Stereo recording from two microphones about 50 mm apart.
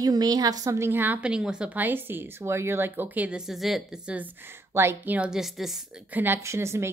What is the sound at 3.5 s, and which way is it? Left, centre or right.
Speech, centre.